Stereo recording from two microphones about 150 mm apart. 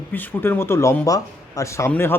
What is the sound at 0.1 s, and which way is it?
Speech, 10° left (ahead or behind).